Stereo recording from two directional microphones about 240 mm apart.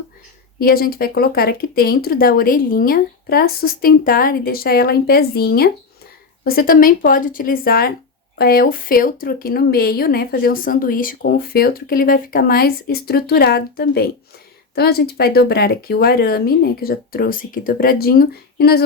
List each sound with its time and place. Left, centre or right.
0.6 s speech: left